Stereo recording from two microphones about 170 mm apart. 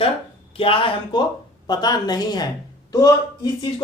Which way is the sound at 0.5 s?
30° left (ahead or behind).